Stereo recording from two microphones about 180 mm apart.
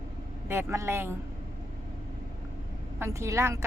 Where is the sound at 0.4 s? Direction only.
15° right (ahead or behind).